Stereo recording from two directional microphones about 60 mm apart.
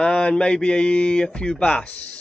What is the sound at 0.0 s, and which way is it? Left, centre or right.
A man's voice, centre.